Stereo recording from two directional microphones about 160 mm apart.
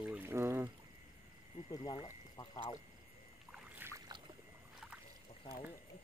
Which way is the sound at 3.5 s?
10° right (ahead or behind).